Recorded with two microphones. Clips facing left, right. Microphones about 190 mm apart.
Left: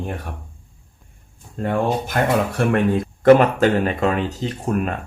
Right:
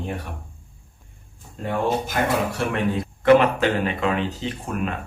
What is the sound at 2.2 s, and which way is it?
Speech, 50° left (ahead or behind).